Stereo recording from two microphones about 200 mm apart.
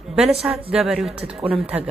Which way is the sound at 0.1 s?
Centre (ahead or behind).